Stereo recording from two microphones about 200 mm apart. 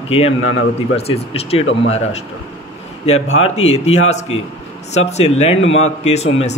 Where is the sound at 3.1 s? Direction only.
35° left (ahead or behind).